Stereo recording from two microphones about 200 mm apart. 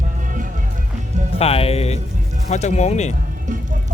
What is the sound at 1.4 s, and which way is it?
Speech, 30° left (ahead or behind).